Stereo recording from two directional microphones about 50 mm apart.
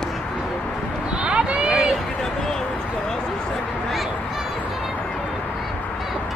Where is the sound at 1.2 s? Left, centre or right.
Right.